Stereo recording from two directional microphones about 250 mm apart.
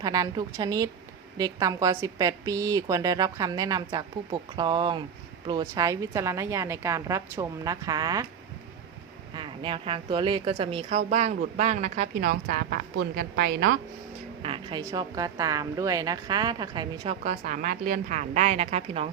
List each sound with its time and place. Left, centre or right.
0.0 s a woman's voice: centre
9.3 s speech: centre; by 13.7 s right
14.4 s a woman's voice: centre
17.2 s speech: right